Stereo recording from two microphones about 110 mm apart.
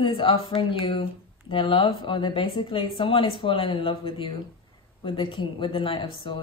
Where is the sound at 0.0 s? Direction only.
50° left (ahead or behind).